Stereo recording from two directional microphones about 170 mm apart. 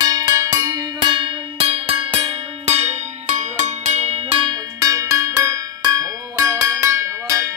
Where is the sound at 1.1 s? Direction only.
30° right (ahead or behind).